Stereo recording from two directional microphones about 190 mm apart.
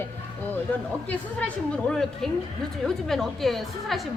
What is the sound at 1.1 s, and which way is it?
A woman's voice, 5° left (ahead or behind).